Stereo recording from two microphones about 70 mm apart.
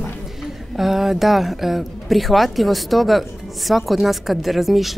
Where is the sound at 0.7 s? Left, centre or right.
Centre.